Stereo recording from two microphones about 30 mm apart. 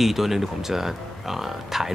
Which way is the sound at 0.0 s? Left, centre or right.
Centre.